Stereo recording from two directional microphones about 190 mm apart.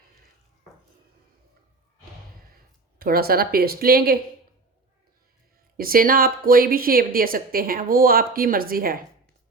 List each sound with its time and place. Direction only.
3.0 s a woman's voice: 50° right (ahead or behind)
5.7 s a woman's voice: 50° right (ahead or behind)